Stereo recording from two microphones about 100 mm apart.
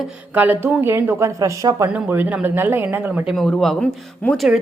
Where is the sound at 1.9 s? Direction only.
15° right (ahead or behind).